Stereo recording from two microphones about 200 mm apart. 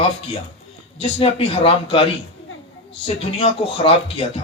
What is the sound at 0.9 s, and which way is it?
A man's voice, 30° left (ahead or behind).